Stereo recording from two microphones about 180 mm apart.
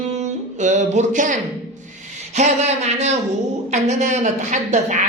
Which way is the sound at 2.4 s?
40° right (ahead or behind).